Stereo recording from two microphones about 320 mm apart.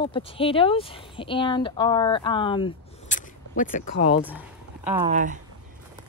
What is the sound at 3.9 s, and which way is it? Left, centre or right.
Speech, left.